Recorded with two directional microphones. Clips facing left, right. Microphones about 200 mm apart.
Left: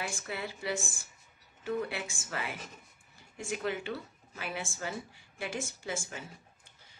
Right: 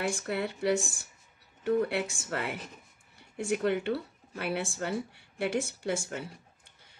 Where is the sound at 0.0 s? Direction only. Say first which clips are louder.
Right 7 dB; 65° right (ahead or behind).